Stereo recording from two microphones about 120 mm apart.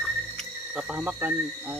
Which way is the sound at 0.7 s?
10° right (ahead or behind).